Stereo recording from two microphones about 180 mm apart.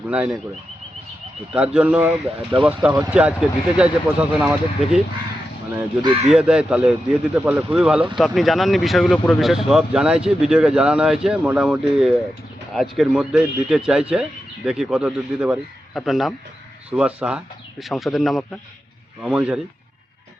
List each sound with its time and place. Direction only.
0.1 s speech: 5° right (ahead or behind)
1.5 s speech: 5° right (ahead or behind)
2.5 s speech: 30° right (ahead or behind)
2.9 s speech: 10° right (ahead or behind)
6.2 s speech: 5° right (ahead or behind)